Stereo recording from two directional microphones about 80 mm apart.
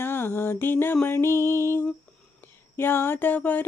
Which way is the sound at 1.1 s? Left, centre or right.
Left.